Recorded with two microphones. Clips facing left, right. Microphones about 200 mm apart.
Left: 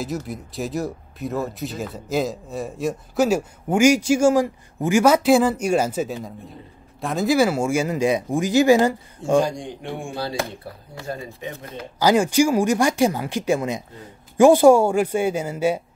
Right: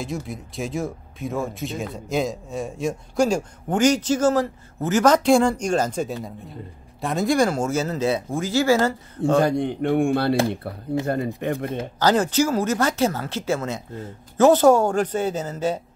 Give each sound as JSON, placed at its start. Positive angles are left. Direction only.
{"t": 0.0, "sound": "speech", "side_deg": 0}
{"t": 9.4, "sound": "speech", "side_deg": -60}
{"t": 11.3, "sound": "speech", "side_deg": -60}
{"t": 12.0, "sound": "speech", "side_deg": 10}